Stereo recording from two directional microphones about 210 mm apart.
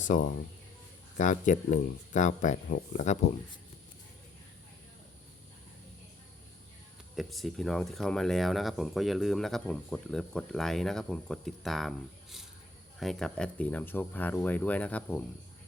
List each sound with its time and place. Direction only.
0.1 s speech: 40° left (ahead or behind)
7.2 s speech: centre (ahead or behind)